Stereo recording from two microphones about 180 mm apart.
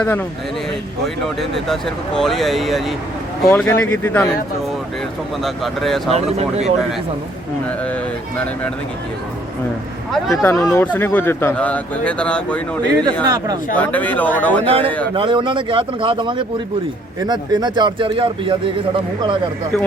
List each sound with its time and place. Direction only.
1.0 s speech: centre (ahead or behind)
5.4 s speech: centre (ahead or behind)
6.1 s speech: 35° right (ahead or behind)
10.4 s speech: 15° left (ahead or behind)
13.2 s speech: 20° right (ahead or behind)
13.7 s speech: 10° left (ahead or behind)
14.6 s speech: 30° right (ahead or behind)